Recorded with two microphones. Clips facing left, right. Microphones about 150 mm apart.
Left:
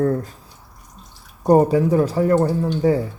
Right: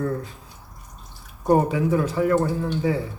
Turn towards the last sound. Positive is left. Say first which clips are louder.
# left 5 dB
turn(degrees=40)  # may be behind; listen again after turning